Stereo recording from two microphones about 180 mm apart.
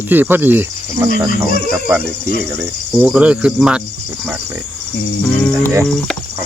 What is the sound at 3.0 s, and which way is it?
Cricket, 5° right (ahead or behind).